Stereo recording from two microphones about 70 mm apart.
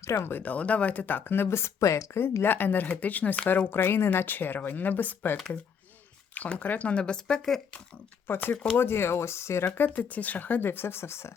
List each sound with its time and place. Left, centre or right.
0.0 s speech: left
2.4 s speech: left; by 7.6 s centre
8.3 s speech: left
9.7 s speech: left